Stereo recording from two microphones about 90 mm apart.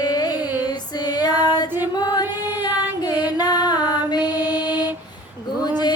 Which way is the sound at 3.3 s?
45° left (ahead or behind).